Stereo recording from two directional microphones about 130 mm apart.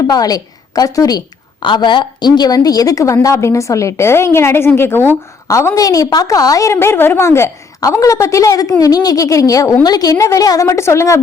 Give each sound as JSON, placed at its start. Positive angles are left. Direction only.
{"t": 0.1, "sound": "a woman's voice", "side_deg": 30}